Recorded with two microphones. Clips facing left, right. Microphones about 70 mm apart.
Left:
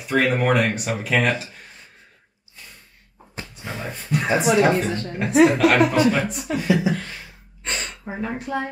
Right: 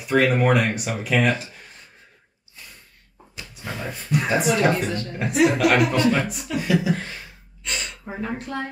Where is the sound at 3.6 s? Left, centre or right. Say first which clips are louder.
Right 1 dB; centre.